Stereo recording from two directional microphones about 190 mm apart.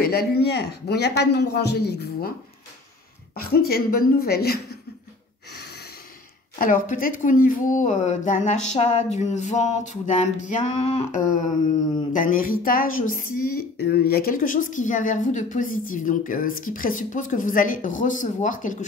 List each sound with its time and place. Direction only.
0.0 s speech: 55° left (ahead or behind)
3.3 s speech: 55° left (ahead or behind)
5.5 s snort: 60° left (ahead or behind)
6.6 s speech: 45° left (ahead or behind)